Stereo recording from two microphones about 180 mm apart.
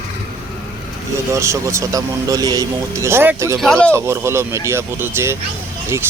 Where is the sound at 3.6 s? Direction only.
5° left (ahead or behind).